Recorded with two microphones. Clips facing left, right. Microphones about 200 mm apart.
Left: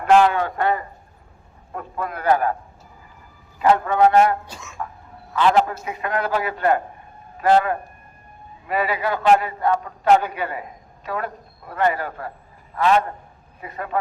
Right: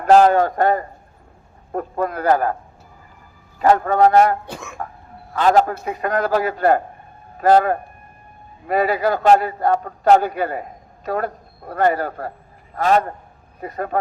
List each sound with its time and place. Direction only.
0.0 s a man's voice: 40° right (ahead or behind)
3.6 s a man's voice: 40° right (ahead or behind)
4.4 s speech: 55° right (ahead or behind)
5.3 s a man's voice: 40° right (ahead or behind)